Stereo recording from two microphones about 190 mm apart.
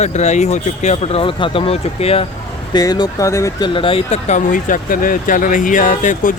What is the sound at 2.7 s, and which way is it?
Speech, 20° left (ahead or behind).